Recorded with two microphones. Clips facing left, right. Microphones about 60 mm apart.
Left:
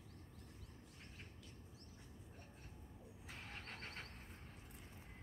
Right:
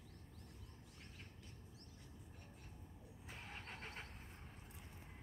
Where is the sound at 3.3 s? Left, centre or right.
Centre.